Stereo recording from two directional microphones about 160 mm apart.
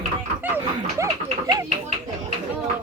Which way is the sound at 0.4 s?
10° right (ahead or behind).